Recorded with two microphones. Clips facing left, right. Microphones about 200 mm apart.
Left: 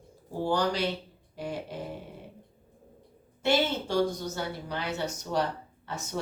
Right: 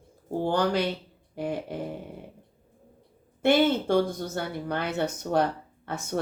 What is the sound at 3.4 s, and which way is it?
Speech, 55° right (ahead or behind).